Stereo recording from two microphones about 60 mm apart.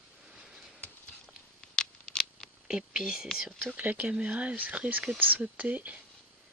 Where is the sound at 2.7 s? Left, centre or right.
Centre.